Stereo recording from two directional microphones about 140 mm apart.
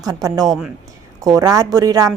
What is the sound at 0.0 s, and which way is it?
Speech, 25° right (ahead or behind).